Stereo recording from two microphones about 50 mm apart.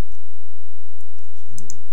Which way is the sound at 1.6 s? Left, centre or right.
Left.